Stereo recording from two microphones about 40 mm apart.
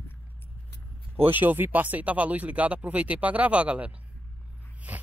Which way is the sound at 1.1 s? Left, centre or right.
Right.